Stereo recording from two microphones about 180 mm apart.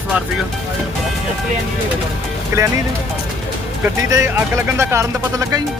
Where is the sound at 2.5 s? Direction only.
15° right (ahead or behind).